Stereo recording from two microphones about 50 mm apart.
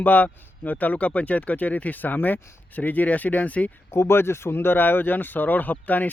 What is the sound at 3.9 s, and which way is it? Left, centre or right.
Speech, left.